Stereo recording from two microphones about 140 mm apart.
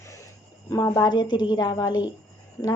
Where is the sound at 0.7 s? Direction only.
25° left (ahead or behind).